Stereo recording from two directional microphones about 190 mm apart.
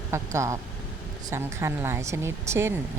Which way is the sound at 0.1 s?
15° right (ahead or behind).